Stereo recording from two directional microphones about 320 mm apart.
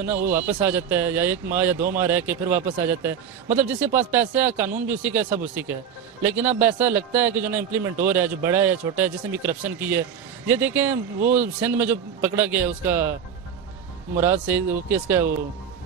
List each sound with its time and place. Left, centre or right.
0.0 s a man's voice: centre